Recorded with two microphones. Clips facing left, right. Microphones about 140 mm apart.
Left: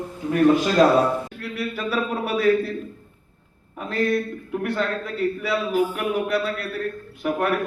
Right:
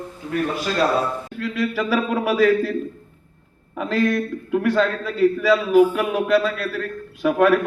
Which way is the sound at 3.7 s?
90° right.